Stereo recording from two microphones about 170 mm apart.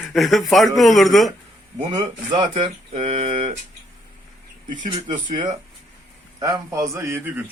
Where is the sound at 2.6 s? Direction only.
40° right (ahead or behind).